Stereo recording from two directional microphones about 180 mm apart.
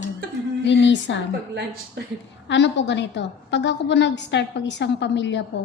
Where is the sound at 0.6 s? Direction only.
80° left.